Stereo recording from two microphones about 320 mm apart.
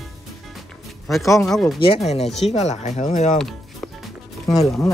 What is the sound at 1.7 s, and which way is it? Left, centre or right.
Speech, centre.